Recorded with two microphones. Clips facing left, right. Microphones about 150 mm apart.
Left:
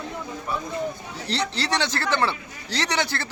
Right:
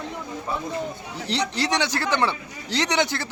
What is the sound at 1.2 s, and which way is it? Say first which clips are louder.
A man's voice: right 2 dB; 15° right (ahead or behind).